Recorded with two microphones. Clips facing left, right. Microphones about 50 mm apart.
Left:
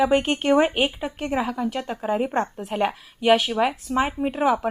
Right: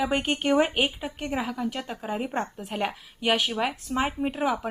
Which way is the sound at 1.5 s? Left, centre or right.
Centre.